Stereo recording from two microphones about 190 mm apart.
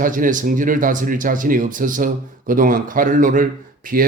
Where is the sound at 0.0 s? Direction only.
45° right (ahead or behind).